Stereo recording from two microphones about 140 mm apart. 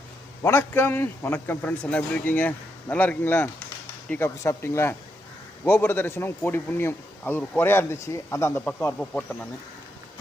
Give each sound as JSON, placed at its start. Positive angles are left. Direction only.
{"t": 0.4, "sound": "speech", "side_deg": 15}